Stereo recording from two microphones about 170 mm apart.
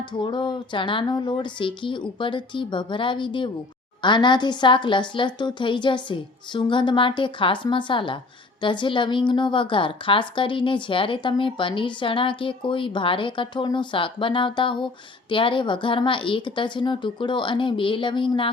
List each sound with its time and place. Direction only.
0.0 s a woman's voice: 25° left (ahead or behind)